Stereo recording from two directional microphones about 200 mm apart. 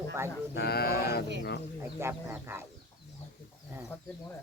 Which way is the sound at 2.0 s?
15° right (ahead or behind).